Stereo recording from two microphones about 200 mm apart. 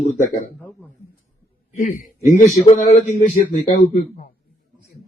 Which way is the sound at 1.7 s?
40° left (ahead or behind).